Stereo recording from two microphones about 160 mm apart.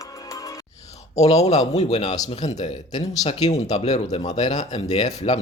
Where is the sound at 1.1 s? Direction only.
45° left (ahead or behind).